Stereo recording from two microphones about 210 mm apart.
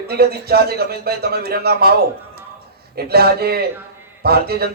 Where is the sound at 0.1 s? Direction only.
50° right (ahead or behind).